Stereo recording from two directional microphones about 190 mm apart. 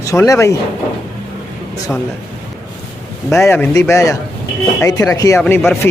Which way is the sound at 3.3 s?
15° left (ahead or behind).